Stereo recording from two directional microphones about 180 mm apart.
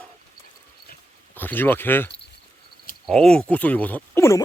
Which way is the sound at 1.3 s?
10° left (ahead or behind).